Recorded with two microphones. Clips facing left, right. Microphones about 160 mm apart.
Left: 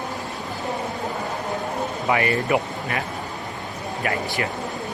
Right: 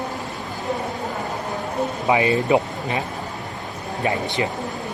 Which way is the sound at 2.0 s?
20° right (ahead or behind).